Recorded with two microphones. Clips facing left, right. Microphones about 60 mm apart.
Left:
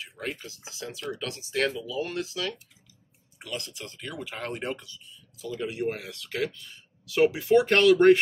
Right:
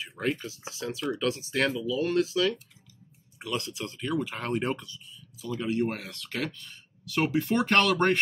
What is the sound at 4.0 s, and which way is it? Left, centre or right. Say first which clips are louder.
Speech: right 6 dB; centre.